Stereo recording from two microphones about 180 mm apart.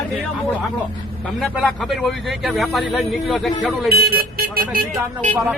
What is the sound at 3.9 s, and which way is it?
Speech, 60° right (ahead or behind).